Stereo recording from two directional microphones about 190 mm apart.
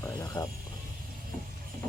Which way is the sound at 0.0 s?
20° left (ahead or behind).